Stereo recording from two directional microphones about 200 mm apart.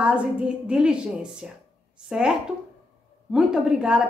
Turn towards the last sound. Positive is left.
turn(degrees=-5)  # may be behind; listen again after turning